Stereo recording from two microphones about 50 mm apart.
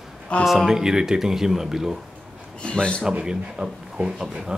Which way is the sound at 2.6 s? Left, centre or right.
Centre.